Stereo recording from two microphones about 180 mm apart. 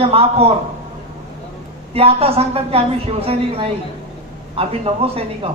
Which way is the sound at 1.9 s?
35° right (ahead or behind).